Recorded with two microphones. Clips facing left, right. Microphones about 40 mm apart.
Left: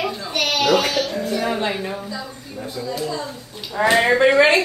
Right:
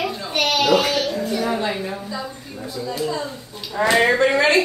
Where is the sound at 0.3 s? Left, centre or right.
Centre.